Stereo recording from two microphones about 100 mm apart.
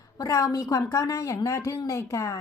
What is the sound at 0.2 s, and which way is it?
Speech, 35° left (ahead or behind).